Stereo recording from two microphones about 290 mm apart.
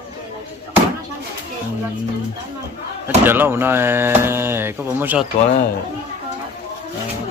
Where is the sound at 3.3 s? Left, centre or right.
Centre.